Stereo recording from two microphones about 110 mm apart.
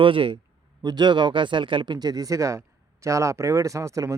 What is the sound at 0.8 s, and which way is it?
Speech, 40° right (ahead or behind).